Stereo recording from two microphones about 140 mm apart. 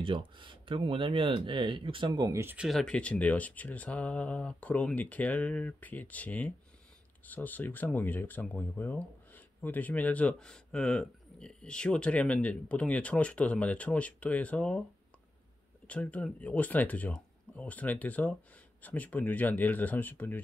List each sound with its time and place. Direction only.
0.0 s speech: 35° right (ahead or behind)
2.3 s speech: 10° right (ahead or behind)
2.8 s speech: 5° left (ahead or behind)
15.9 s speech: 10° left (ahead or behind)